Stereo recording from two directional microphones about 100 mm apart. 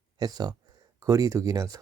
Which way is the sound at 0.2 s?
40° right (ahead or behind).